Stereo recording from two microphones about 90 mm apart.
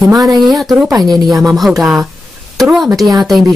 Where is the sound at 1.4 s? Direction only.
Centre (ahead or behind).